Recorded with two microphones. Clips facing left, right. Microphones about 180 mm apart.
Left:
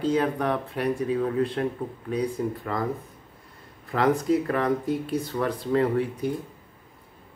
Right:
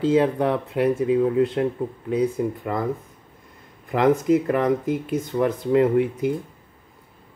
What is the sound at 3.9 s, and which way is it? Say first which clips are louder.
Speech: right 4 dB; 20° right (ahead or behind).